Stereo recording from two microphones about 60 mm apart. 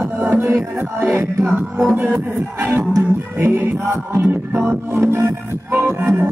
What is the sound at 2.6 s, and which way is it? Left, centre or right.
Music, right.